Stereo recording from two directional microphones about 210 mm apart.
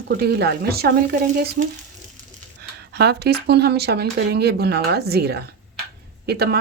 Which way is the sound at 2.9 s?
50° right (ahead or behind).